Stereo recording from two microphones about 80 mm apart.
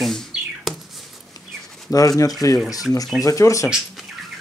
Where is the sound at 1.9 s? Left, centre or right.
Left.